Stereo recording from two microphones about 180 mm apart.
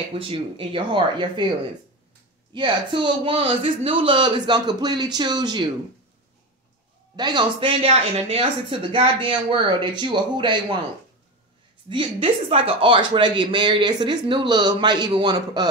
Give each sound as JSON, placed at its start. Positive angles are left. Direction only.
{"t": 0.1, "sound": "speech", "side_deg": -30}
{"t": 2.5, "sound": "speech", "side_deg": -25}
{"t": 7.2, "sound": "speech", "side_deg": -25}
{"t": 11.9, "sound": "speech", "side_deg": -30}